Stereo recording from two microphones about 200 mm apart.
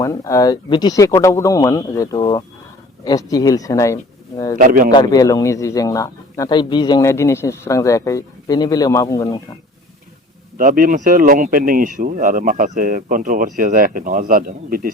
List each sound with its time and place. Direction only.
0.0 s a man's voice: 15° left (ahead or behind)
4.5 s speech: 45° right (ahead or behind)
4.9 s a man's voice: 20° left (ahead or behind)
10.6 s speech: 45° right (ahead or behind)